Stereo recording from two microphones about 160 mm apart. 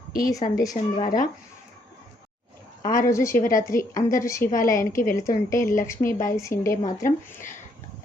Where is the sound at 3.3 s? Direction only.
55° left (ahead or behind).